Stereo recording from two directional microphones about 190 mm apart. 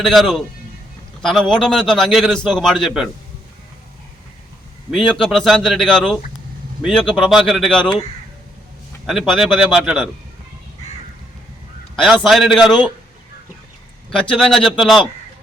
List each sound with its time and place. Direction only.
0.0 s a man's voice: centre (ahead or behind)
4.9 s a man's voice: centre (ahead or behind)
9.0 s a man's voice: centre (ahead or behind)
12.0 s a man's voice: centre (ahead or behind)
14.1 s a man's voice: 5° left (ahead or behind)